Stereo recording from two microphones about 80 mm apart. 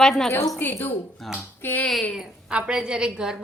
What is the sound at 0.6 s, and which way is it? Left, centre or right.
Speech, left.